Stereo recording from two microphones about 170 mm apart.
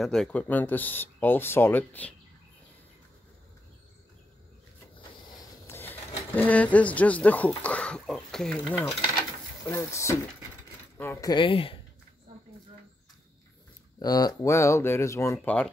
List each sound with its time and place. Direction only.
0.0 s speech: centre (ahead or behind)
4.9 s vehicle: 25° left (ahead or behind)
5.7 s speech: 10° left (ahead or behind)
9.7 s speech: 15° left (ahead or behind)
13.9 s speech: 20° left (ahead or behind)